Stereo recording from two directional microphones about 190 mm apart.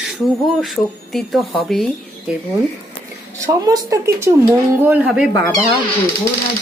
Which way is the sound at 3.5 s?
15° right (ahead or behind).